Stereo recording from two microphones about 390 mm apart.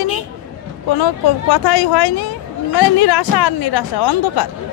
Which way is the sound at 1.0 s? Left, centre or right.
Left.